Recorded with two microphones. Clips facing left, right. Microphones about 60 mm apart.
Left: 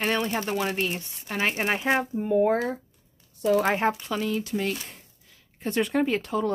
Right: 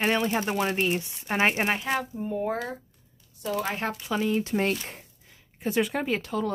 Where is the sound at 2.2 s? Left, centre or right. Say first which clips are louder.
Left 8 dB; left.